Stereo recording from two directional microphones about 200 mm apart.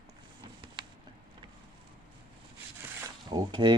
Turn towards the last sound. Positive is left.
turn(degrees=-20)  # may be behind; listen again after turning